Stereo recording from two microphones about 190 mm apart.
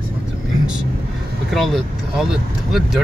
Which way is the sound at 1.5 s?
Centre (ahead or behind).